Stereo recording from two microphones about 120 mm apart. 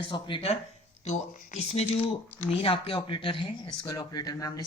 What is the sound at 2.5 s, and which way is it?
Speech, 50° left (ahead or behind).